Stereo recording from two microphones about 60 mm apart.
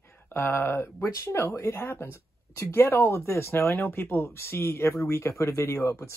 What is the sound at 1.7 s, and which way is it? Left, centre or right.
Speech, left.